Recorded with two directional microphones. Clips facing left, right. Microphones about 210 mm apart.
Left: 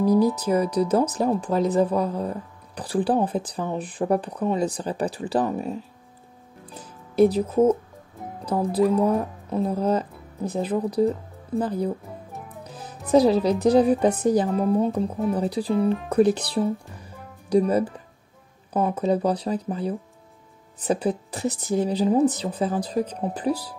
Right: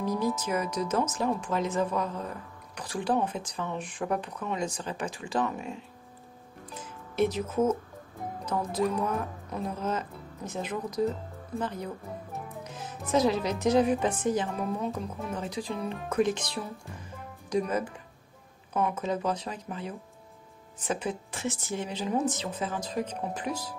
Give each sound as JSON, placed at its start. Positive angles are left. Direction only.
{"t": 0.2, "sound": "speech", "side_deg": 35}
{"t": 6.6, "sound": "music", "side_deg": 35}
{"t": 8.5, "sound": "speech", "side_deg": 35}
{"t": 15.7, "sound": "speech", "side_deg": 0}
{"t": 16.1, "sound": "speech", "side_deg": 35}